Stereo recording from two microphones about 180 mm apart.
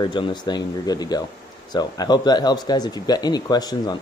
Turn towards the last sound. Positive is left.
turn(degrees=20)  # may be behind; listen again after turning